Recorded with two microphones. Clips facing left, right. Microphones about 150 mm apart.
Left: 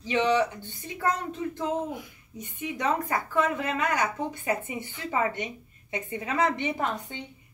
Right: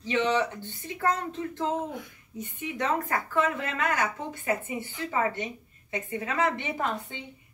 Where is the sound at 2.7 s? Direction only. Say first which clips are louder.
Left 1 dB; 15° left (ahead or behind).